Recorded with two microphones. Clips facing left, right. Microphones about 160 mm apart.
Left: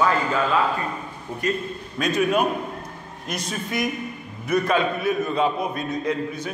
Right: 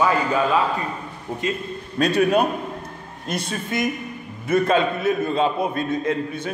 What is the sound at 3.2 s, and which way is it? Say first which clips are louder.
A man's voice: right 3 dB; 30° right (ahead or behind).